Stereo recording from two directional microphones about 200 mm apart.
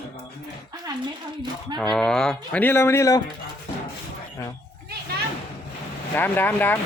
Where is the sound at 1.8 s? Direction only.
5° left (ahead or behind).